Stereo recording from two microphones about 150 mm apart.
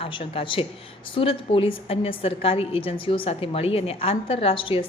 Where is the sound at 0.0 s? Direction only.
35° left (ahead or behind).